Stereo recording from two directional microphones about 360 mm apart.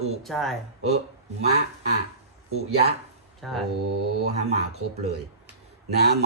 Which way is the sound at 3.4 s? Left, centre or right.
Centre.